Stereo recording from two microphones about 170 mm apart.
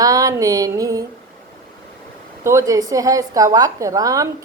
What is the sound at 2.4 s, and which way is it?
A woman's voice, 15° right (ahead or behind).